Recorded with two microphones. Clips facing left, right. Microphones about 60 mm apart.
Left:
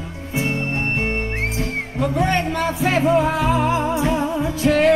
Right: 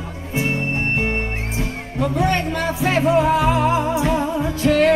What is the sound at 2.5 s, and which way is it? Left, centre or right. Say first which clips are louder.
Music: even; centre.